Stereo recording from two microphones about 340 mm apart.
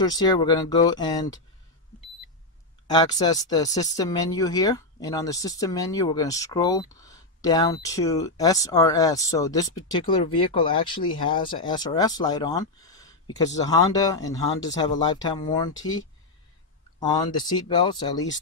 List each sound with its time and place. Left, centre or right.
0.0 s speech: centre
2.9 s speech: centre
15.7 s speech: left
17.0 s speech: centre